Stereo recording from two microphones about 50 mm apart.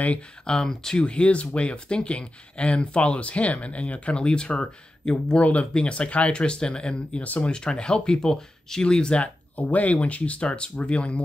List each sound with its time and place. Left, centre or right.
0.5 s speech: centre